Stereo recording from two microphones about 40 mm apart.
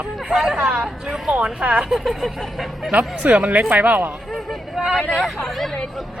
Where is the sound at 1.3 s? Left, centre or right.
Right.